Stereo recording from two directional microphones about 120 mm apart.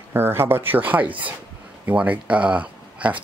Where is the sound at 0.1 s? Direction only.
20° right (ahead or behind).